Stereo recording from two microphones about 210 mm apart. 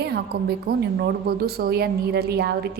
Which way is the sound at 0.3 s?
50° right (ahead or behind).